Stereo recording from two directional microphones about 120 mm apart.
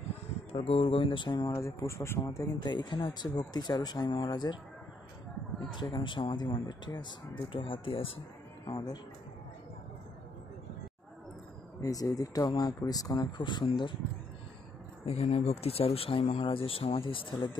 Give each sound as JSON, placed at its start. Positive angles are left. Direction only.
{"t": 0.5, "sound": "speech", "side_deg": 55}
{"t": 5.8, "sound": "speech", "side_deg": 40}
{"t": 11.8, "sound": "speech", "side_deg": 30}
{"t": 15.0, "sound": "speech", "side_deg": 60}